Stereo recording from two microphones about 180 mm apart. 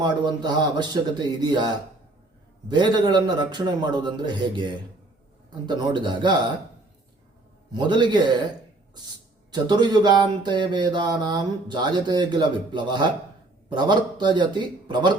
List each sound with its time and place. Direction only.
0.0 s mantra: 25° right (ahead or behind)
7.7 s mantra: 25° right (ahead or behind)
9.5 s mantra: 25° right (ahead or behind)
14.8 s speech: 25° right (ahead or behind)